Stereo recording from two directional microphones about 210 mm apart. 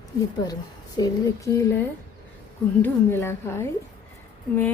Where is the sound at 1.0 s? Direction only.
15° left (ahead or behind).